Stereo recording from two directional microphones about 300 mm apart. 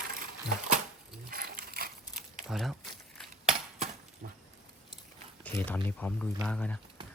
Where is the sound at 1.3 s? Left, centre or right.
Right.